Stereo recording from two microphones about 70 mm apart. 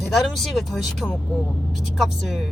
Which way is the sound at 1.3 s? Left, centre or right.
Centre.